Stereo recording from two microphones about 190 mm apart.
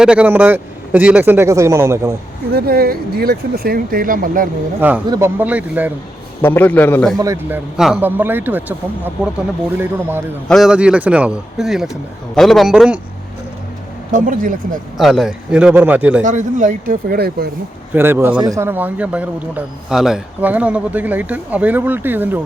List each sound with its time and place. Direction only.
0.0 s a man's voice: 5° right (ahead or behind)
2.5 s speech: 55° right (ahead or behind)
4.8 s a man's voice: 10° right (ahead or behind)
6.4 s a man's voice: 10° left (ahead or behind)
7.2 s a man's voice: 15° right (ahead or behind)
9.7 s a man's voice: 10° right (ahead or behind)
14.1 s speech: 45° right (ahead or behind)
14.9 s a man's voice: centre (ahead or behind)
16.2 s speech: 40° right (ahead or behind)
17.9 s a man's voice: 10° right (ahead or behind)